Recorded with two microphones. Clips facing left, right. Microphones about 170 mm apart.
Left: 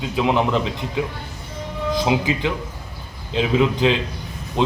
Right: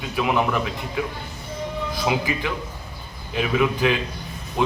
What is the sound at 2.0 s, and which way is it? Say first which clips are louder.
Speech: left 3 dB; 20° left (ahead or behind).